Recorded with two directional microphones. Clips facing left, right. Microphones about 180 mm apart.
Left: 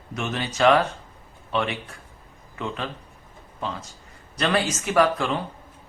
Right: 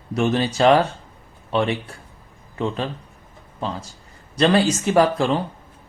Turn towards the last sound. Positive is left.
turn(degrees=-35)  # may be behind; listen again after turning